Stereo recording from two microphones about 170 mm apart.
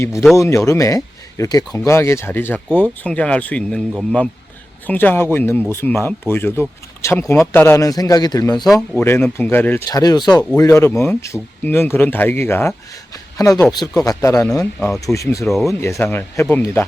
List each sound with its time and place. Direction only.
0.0 s speech: 15° left (ahead or behind)
4.9 s speech: 10° left (ahead or behind)
9.0 s speech: 10° left (ahead or behind)
10.0 s speech: 25° left (ahead or behind)
15.4 s speech: centre (ahead or behind)
15.8 s speech: 15° left (ahead or behind)